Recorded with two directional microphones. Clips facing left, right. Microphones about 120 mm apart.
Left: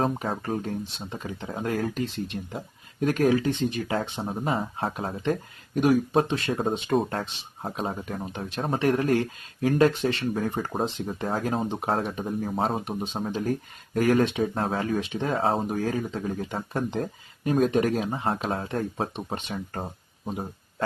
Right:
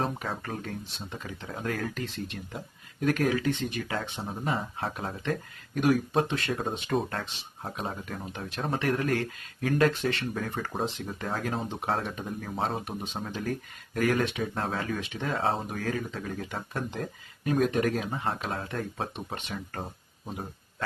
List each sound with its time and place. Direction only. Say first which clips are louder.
0.2 s speech: left 6 dB; 25° left (ahead or behind)